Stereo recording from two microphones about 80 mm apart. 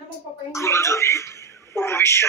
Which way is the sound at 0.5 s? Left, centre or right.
Left.